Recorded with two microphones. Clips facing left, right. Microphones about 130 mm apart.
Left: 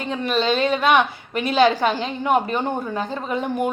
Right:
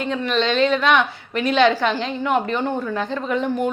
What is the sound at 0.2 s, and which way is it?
A woman's voice, 10° left (ahead or behind).